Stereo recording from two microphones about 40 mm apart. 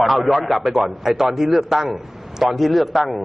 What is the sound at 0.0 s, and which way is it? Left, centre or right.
A man's voice, centre.